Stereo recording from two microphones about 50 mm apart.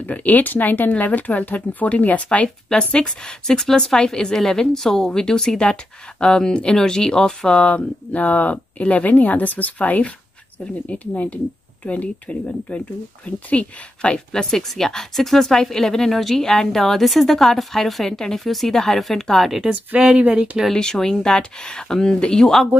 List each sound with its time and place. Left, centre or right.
0.0 s speech: left; by 7.6 s centre
7.6 s speech: left; by 19.5 s centre
19.9 s speech: right
20.7 s speech: centre